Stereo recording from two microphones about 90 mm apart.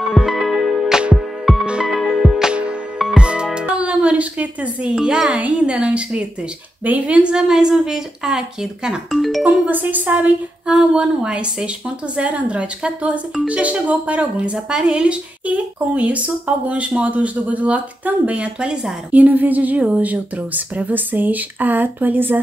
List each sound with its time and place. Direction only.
0.1 s music: 5° right (ahead or behind)
4.9 s speech: 5° right (ahead or behind)
9.4 s a woman's voice: 15° right (ahead or behind)